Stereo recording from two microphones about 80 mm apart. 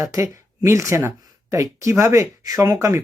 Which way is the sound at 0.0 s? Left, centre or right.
Right.